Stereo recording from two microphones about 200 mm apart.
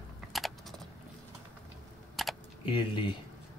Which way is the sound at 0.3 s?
Centre (ahead or behind).